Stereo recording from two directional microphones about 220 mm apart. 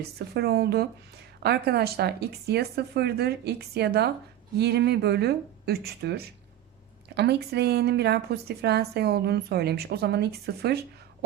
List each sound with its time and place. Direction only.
0.0 s a woman's voice: 45° right (ahead or behind)